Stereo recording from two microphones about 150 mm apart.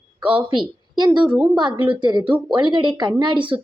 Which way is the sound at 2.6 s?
30° right (ahead or behind).